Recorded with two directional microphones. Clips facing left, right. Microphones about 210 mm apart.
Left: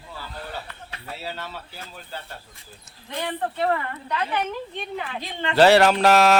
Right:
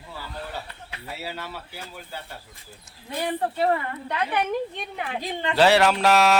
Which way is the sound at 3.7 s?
30° right (ahead or behind).